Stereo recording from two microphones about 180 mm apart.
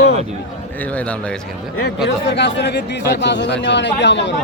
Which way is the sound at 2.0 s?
75° left (ahead or behind).